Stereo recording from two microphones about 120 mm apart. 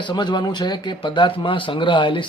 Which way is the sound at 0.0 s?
40° left (ahead or behind).